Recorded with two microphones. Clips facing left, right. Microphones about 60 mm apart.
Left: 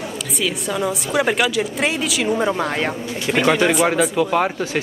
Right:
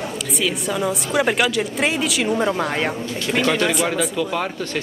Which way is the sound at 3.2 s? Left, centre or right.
Centre.